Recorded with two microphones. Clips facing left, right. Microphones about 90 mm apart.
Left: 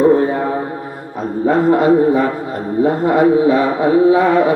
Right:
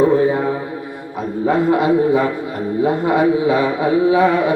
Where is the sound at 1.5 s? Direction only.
40° left (ahead or behind).